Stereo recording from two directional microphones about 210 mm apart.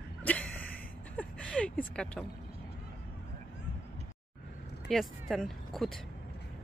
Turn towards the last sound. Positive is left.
turn(degrees=0)  # may be behind; listen again after turning